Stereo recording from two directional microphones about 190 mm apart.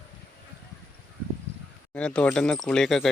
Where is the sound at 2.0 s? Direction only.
5° left (ahead or behind).